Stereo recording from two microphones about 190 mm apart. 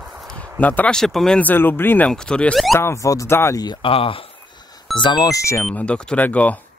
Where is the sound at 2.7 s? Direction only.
15° left (ahead or behind).